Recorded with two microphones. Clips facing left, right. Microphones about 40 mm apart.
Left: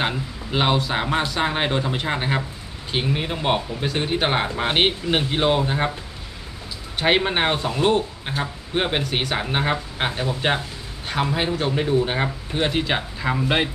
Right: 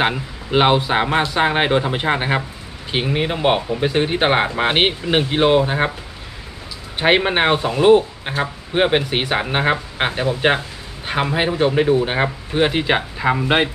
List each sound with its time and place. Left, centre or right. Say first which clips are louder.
0.0 s speech: right 5 dB; right
7.0 s speech: right 4 dB; centre